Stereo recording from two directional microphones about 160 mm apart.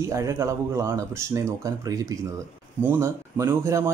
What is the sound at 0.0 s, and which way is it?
Speech, 20° right (ahead or behind).